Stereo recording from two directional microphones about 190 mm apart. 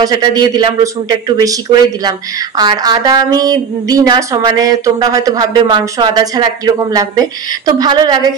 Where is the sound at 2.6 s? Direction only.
20° right (ahead or behind).